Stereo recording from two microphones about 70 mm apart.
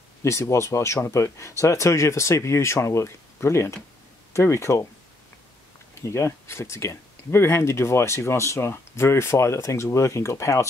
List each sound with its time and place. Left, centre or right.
0.2 s speech: left
6.0 s speech: left